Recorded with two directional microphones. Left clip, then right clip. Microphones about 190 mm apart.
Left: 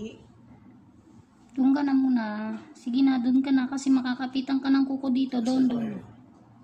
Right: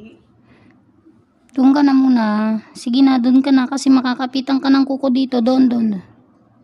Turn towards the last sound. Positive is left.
turn(degrees=-75)  # may be behind; listen again after turning